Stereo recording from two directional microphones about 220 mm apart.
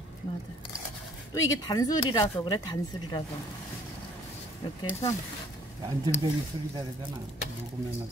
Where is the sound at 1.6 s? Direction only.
15° left (ahead or behind).